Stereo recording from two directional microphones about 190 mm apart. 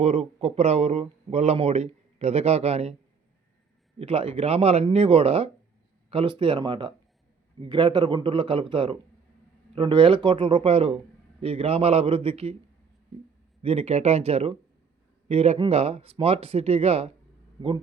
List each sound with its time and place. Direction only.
0.0 s speech: 35° right (ahead or behind)
3.9 s a man's voice: 30° right (ahead or behind)
13.6 s speech: 30° right (ahead or behind)